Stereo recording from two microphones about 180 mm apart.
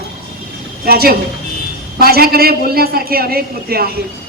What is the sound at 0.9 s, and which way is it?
A man's voice, 60° right (ahead or behind).